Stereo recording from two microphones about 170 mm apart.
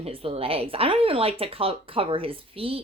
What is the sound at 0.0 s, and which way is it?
Speech, 35° right (ahead or behind).